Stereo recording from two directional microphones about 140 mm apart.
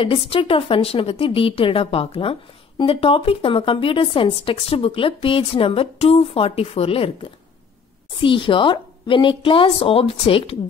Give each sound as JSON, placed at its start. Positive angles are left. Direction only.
{"t": 0.0, "sound": "speech", "side_deg": 40}